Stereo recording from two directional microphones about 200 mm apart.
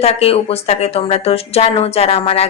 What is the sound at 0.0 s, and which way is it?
Speech, 30° left (ahead or behind).